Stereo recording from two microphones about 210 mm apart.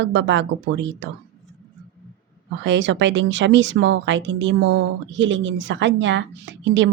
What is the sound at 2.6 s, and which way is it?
Speech, 60° right (ahead or behind).